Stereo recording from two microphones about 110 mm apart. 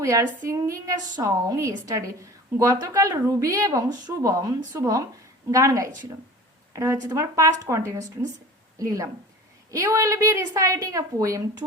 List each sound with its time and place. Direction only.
0.0 s a woman's voice: 30° right (ahead or behind)
9.9 s a woman's voice: 30° right (ahead or behind)